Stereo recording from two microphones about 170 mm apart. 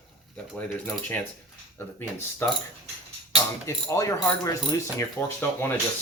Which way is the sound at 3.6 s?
20° left (ahead or behind).